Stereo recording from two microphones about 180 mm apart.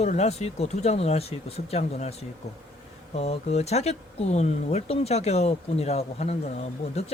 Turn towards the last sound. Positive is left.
turn(degrees=35)  # may be behind; listen again after turning